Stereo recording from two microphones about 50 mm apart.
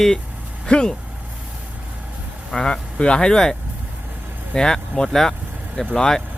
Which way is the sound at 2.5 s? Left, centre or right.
Centre.